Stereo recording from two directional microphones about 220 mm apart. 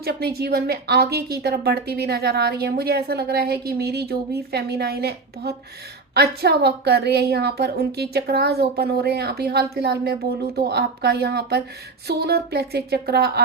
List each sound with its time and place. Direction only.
0.0 s speech: 45° right (ahead or behind)